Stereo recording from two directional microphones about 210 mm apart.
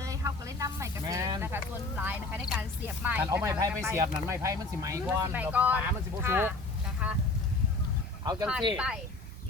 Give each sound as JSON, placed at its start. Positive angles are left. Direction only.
{"t": 0.0, "sound": "speech", "side_deg": -15}
{"t": 7.0, "sound": "a sound", "side_deg": -10}
{"t": 8.2, "sound": "speech", "side_deg": -20}
{"t": 8.7, "sound": "speech", "side_deg": -5}